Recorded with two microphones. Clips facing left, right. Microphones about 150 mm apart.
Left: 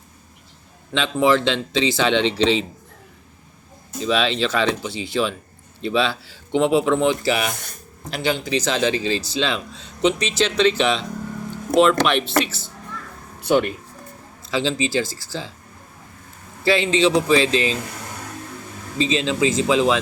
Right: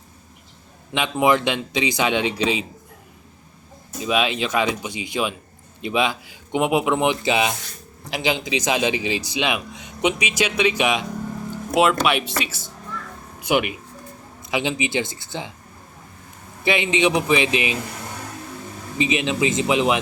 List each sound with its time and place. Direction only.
0.9 s speech: 15° right (ahead or behind)
4.0 s speech: 15° right (ahead or behind)
16.6 s speech: 20° right (ahead or behind)
18.9 s speech: 15° right (ahead or behind)